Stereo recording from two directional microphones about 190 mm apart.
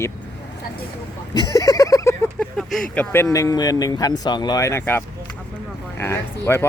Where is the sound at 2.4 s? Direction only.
Centre (ahead or behind).